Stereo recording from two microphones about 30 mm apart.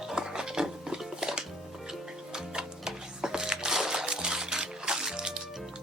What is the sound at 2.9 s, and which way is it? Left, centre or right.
Music, right.